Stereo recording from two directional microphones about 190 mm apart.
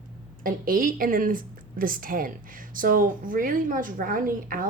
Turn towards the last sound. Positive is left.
turn(degrees=-50)  # may be behind; listen again after turning